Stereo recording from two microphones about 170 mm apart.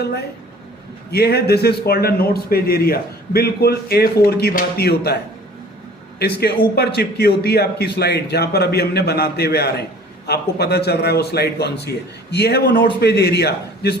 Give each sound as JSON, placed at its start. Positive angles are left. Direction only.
{"t": 1.1, "sound": "a man's voice", "side_deg": 70}
{"t": 6.4, "sound": "a man's voice", "side_deg": 70}